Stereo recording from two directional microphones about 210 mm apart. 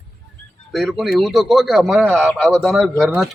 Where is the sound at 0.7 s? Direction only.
Centre (ahead or behind).